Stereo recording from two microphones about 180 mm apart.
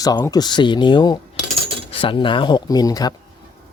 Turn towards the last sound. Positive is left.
turn(degrees=20)  # may be behind; listen again after turning